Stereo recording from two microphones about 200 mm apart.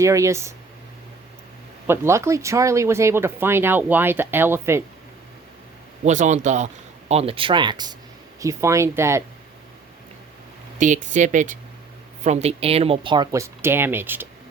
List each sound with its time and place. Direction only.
0.0 s speech: 15° right (ahead or behind)
1.9 s speech: 15° right (ahead or behind)
6.1 s speech: 35° right (ahead or behind); by 9.2 s 15° right (ahead or behind)
10.8 s speech: 40° right (ahead or behind); by 14.3 s 10° right (ahead or behind)